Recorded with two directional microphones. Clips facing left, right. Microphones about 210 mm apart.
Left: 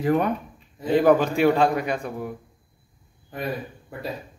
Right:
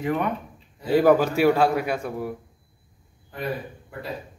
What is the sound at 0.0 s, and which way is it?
Speech, 35° left (ahead or behind).